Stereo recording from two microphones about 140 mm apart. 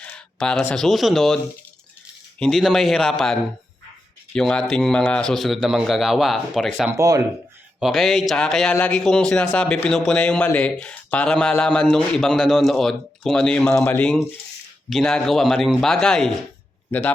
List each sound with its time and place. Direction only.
0.0 s speech: 10° left (ahead or behind)
2.4 s a man's voice: centre (ahead or behind)
6.9 s speech: 20° right (ahead or behind)
7.8 s a man's voice: centre (ahead or behind)